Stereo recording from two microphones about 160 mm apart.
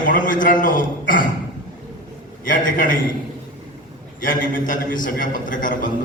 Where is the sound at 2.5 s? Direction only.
55° left (ahead or behind).